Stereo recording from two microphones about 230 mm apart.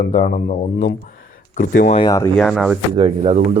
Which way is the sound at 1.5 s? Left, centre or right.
Left.